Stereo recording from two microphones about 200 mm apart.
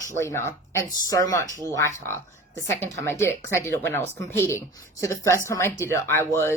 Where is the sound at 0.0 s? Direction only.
15° left (ahead or behind).